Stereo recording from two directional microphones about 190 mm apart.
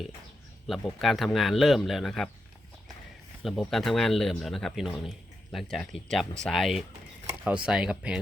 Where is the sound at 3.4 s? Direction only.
Centre (ahead or behind).